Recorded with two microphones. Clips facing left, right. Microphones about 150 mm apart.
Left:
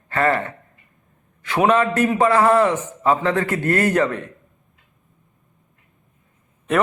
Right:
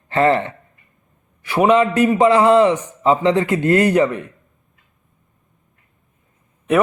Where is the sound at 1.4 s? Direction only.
10° right (ahead or behind).